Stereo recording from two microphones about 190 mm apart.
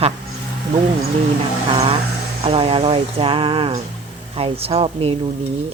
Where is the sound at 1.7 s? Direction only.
30° right (ahead or behind).